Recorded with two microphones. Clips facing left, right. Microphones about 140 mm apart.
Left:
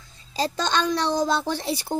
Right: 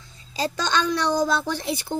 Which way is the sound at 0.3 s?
35° left (ahead or behind).